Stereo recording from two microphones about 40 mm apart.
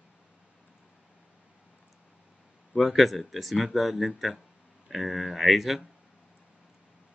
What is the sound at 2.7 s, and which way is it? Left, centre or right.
Speech, centre.